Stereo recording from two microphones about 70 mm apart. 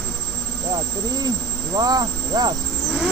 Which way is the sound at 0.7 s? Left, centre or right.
Right.